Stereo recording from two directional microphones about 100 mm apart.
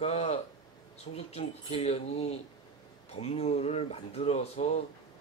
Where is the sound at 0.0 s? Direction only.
90° left.